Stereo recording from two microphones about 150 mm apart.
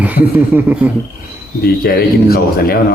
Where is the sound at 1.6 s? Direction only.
90° left.